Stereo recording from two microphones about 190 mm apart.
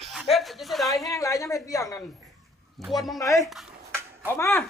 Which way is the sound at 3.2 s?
15° left (ahead or behind).